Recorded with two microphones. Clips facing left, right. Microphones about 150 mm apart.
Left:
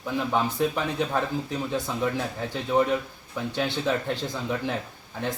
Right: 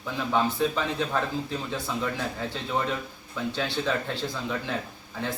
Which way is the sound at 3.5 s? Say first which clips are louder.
Left 3 dB; 15° left (ahead or behind).